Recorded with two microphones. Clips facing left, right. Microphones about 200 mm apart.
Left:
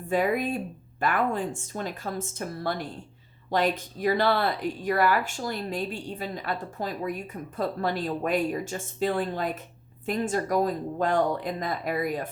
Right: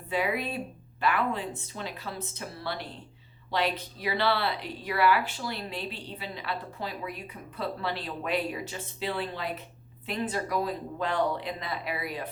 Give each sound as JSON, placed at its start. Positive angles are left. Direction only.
{"t": 0.1, "sound": "speech", "side_deg": 45}